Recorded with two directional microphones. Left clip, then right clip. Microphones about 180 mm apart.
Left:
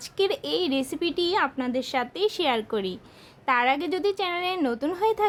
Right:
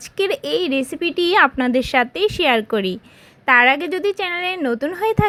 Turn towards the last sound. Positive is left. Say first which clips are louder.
# right 5 dB
turn(degrees=-20)  # may be behind; listen again after turning